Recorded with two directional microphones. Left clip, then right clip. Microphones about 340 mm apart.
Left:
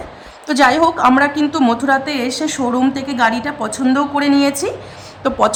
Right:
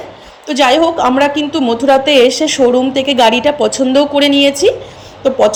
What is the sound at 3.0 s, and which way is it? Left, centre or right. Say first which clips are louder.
Speech: right 7 dB; right.